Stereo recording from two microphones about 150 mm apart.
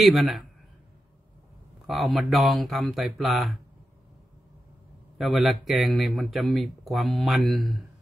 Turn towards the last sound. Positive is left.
turn(degrees=0)  # may be behind; listen again after turning